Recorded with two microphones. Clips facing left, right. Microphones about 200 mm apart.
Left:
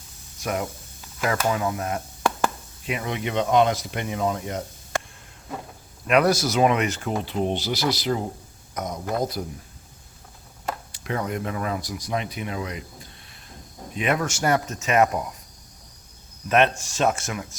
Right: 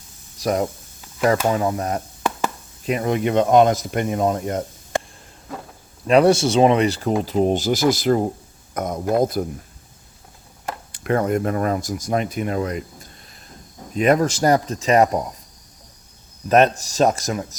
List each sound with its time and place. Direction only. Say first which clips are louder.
0.3 s speech: right 7 dB; 35° right (ahead or behind)
6.1 s speech: right 5 dB; 30° right (ahead or behind); by 9.5 s 50° right (ahead or behind)
10.9 s speech: right 10 dB; 55° right (ahead or behind); by 15.2 s 35° right (ahead or behind)
16.5 s speech: right 5 dB; 40° right (ahead or behind)